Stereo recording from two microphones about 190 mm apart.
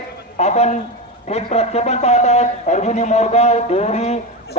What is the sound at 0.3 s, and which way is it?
Speech, 35° left (ahead or behind).